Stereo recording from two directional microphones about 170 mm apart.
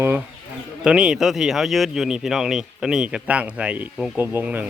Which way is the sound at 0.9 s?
5° right (ahead or behind).